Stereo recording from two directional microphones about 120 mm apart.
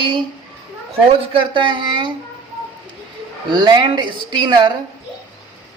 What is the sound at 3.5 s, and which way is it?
Speech, 35° right (ahead or behind).